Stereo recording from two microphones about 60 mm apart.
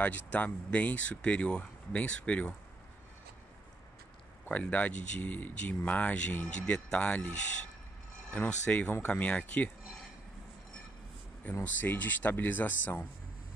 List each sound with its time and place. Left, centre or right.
0.0 s speech: left
4.5 s speech: left
8.3 s speech: left
11.4 s speech: left